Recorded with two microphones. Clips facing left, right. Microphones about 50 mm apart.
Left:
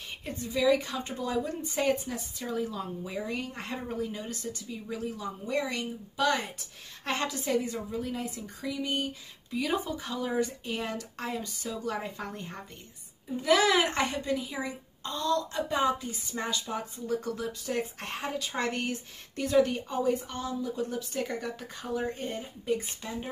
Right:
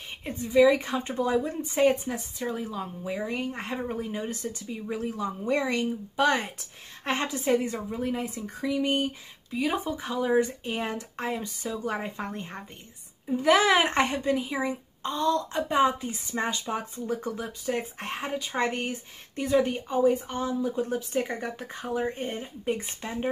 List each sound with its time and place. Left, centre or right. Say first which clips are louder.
0.2 s a woman's voice: right 8 dB; right
9.5 s a woman's voice: right 2 dB; centre; by 23.1 s right